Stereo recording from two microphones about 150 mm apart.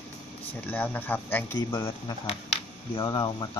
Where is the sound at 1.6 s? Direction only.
25° left (ahead or behind).